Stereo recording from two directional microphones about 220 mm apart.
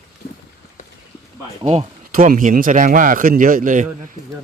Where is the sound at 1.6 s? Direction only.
30° right (ahead or behind).